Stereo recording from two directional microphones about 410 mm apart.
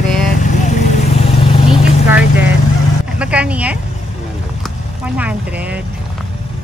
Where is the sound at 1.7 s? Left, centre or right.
Centre.